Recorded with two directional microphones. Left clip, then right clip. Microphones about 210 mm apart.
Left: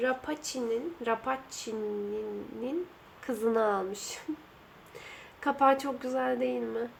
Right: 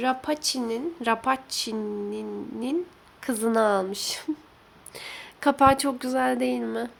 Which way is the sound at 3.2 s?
45° right (ahead or behind).